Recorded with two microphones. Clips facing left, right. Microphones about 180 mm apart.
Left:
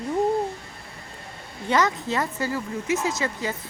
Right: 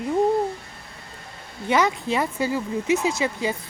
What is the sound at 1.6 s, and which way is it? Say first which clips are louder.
Speech: right 1 dB; 10° right (ahead or behind).